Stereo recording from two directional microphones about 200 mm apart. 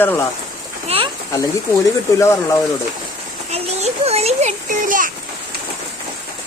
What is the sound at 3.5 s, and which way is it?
A child's voice, 30° right (ahead or behind).